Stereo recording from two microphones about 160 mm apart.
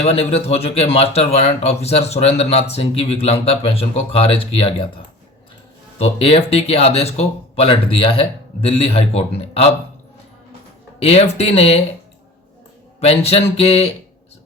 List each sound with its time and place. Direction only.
0.0 s speech: 40° left (ahead or behind)
6.0 s speech: 40° left (ahead or behind)
11.0 s speech: 40° left (ahead or behind)
13.0 s speech: 40° left (ahead or behind)